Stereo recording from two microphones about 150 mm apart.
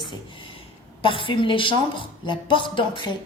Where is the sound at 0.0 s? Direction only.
30° left (ahead or behind).